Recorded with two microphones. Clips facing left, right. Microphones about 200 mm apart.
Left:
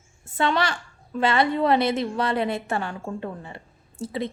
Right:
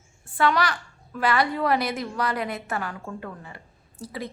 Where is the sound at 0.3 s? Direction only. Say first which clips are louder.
Even; 25° left (ahead or behind).